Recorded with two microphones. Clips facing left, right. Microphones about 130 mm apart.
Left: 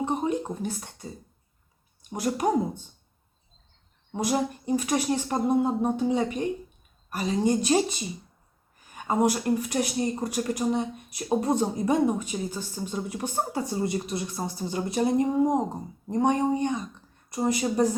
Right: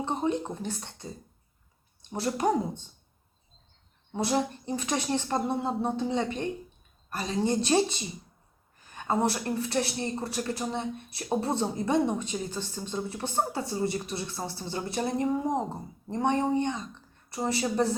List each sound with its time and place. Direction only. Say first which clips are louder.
0.0 s a woman's voice: left 2 dB; 10° left (ahead or behind)
4.1 s a woman's voice: left 1 dB; 10° left (ahead or behind)